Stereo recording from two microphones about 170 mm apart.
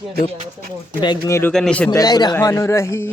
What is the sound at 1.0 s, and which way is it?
Speech, 25° left (ahead or behind).